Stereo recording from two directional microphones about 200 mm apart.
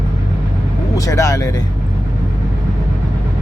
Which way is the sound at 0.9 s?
15° left (ahead or behind).